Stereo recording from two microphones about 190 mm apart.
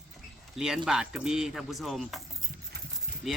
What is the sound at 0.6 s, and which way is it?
Speech, 5° right (ahead or behind).